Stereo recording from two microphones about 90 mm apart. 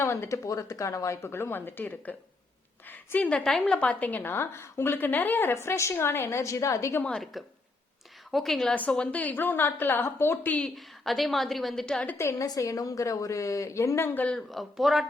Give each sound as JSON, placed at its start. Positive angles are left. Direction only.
{"t": 0.0, "sound": "a woman's voice", "side_deg": 30}
{"t": 7.1, "sound": "a woman's voice", "side_deg": 0}
{"t": 8.7, "sound": "a woman's voice", "side_deg": 15}
{"t": 10.8, "sound": "a woman's voice", "side_deg": 0}
{"t": 12.1, "sound": "a woman's voice", "side_deg": 30}
{"t": 14.1, "sound": "a woman's voice", "side_deg": 20}
{"t": 14.3, "sound": "a woman's voice", "side_deg": 0}